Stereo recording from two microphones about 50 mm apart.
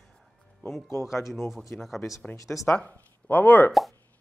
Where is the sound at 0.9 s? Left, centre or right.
Left.